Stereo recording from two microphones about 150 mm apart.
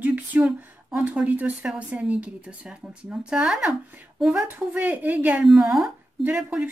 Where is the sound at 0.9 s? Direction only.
10° right (ahead or behind).